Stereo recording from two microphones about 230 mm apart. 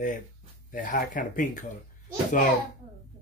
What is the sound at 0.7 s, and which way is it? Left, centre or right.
Speech, left.